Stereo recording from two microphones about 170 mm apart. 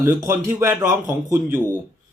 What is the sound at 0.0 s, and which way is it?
Speech, 15° right (ahead or behind).